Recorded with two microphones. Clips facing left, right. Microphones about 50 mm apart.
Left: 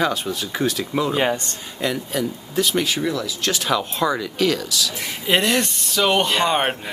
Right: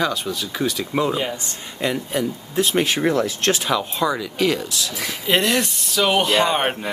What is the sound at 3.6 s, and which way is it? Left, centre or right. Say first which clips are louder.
Speech: even; centre.